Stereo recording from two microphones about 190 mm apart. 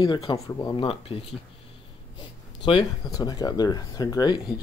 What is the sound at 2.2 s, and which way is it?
Speech, 25° left (ahead or behind).